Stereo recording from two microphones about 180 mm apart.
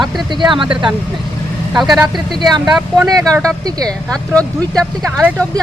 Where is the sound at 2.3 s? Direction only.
25° right (ahead or behind).